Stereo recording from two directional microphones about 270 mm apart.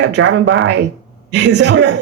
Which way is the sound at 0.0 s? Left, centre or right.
Right.